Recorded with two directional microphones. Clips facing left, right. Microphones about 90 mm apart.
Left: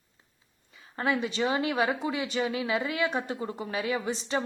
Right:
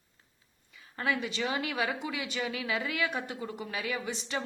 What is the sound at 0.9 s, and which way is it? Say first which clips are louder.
Speech: left 4 dB; 30° left (ahead or behind).